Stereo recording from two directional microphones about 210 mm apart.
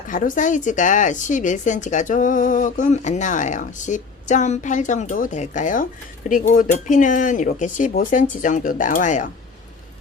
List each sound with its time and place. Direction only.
0.1 s a woman's voice: 40° left (ahead or behind)